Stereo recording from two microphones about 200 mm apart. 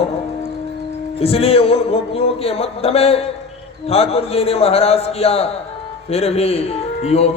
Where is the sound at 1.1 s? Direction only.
30° left (ahead or behind).